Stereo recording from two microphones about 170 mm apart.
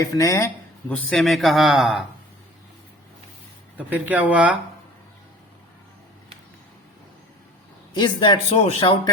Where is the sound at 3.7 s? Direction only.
10° right (ahead or behind).